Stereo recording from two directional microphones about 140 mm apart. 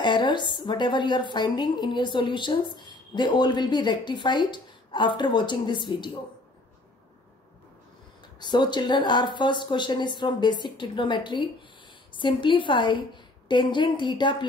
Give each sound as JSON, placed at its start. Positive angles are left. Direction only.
{"t": 0.0, "sound": "a woman's voice", "side_deg": 35}
{"t": 8.4, "sound": "a woman's voice", "side_deg": 30}